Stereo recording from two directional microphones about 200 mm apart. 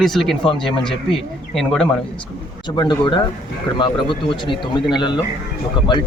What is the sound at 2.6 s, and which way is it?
Speech, 20° left (ahead or behind).